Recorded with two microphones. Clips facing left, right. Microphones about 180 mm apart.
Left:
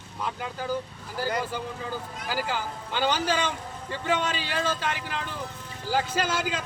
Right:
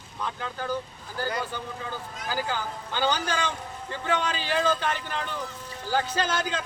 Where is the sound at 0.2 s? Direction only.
10° left (ahead or behind).